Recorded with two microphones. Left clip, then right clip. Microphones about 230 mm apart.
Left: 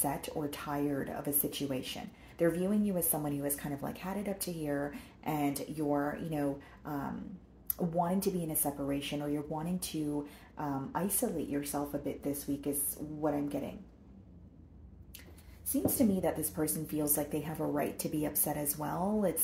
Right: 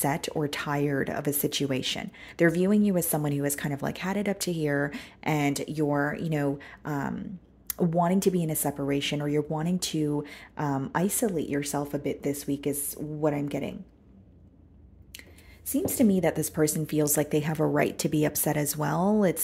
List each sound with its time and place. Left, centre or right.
0.0 s speech: right
15.7 s speech: right